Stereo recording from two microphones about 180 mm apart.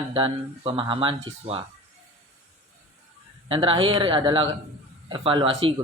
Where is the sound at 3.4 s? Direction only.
30° right (ahead or behind).